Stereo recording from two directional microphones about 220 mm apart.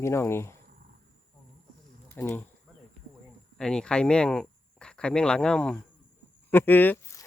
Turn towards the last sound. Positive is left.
turn(degrees=10)  # may be behind; listen again after turning